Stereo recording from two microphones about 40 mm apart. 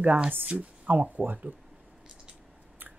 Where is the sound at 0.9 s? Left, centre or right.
Right.